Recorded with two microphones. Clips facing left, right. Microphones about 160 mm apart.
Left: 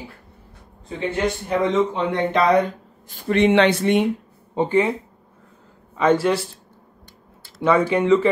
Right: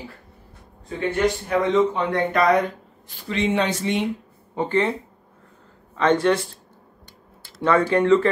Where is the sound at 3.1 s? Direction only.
60° left (ahead or behind).